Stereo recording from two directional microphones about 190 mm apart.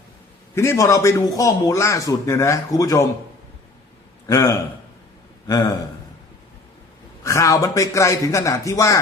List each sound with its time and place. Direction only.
0.5 s a man's voice: 15° left (ahead or behind)
4.3 s a man's voice: 15° left (ahead or behind)
7.3 s a man's voice: 15° left (ahead or behind)